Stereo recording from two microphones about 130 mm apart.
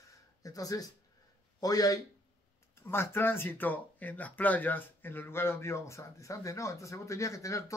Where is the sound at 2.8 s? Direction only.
15° left (ahead or behind).